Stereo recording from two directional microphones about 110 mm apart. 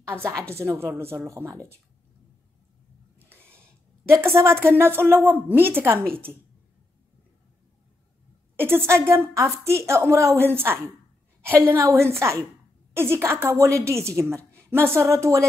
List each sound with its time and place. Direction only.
0.0 s a woman's voice: 25° right (ahead or behind)
4.4 s a woman's voice: 25° right (ahead or behind)
8.5 s a woman's voice: 20° right (ahead or behind)